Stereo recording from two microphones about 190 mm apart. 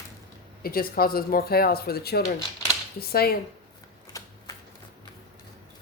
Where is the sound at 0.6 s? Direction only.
50° left (ahead or behind).